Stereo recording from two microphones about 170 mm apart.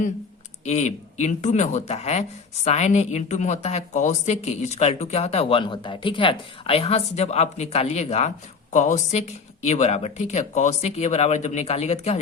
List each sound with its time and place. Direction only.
0.6 s speech: 40° left (ahead or behind)